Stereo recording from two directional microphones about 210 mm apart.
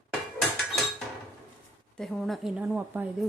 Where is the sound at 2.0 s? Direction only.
Centre (ahead or behind).